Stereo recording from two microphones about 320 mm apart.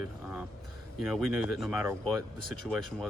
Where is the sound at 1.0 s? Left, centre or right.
Centre.